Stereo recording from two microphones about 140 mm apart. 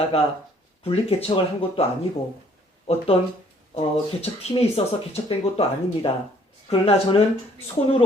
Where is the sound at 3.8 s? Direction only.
45° left (ahead or behind).